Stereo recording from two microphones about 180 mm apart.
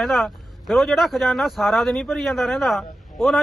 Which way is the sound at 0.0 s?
Centre (ahead or behind).